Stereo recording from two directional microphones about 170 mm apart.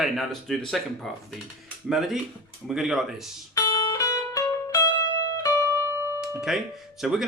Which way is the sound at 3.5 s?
20° left (ahead or behind).